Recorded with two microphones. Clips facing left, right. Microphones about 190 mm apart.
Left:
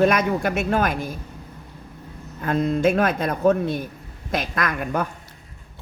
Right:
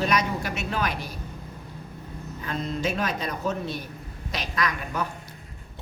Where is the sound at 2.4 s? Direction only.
50° left (ahead or behind).